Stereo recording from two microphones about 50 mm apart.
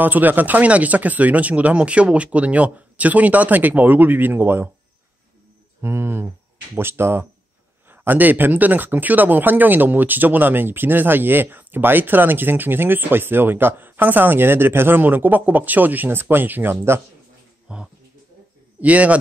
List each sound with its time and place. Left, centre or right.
0.0 s speech: right
5.8 s speech: right
7.9 s speech: right
17.7 s speech: centre
18.8 s a man's voice: right